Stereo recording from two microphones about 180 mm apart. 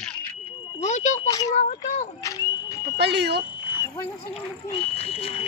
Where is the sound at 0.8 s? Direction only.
40° left (ahead or behind).